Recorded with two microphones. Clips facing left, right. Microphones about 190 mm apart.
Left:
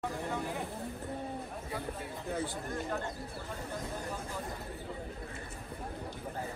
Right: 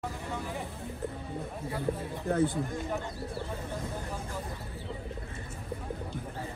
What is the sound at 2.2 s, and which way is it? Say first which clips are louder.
Speech: right 9 dB; 60° right (ahead or behind).